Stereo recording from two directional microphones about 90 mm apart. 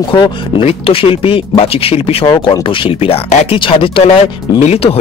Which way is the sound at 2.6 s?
75° left (ahead or behind).